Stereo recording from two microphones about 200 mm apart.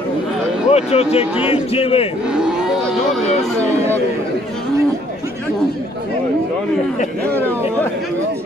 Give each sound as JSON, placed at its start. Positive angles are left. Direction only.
{"t": 0.7, "sound": "speech", "side_deg": 30}
{"t": 2.2, "sound": "cattle", "side_deg": -5}